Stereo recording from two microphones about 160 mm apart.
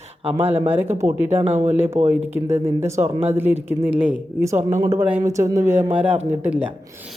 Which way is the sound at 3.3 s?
10° right (ahead or behind).